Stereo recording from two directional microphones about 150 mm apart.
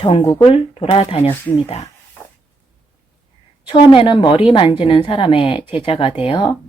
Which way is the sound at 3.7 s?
30° left (ahead or behind).